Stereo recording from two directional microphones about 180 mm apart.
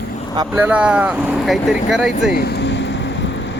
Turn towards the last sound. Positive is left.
turn(degrees=85)